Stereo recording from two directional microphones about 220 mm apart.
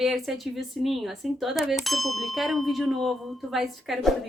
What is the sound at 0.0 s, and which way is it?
Speech, centre (ahead or behind).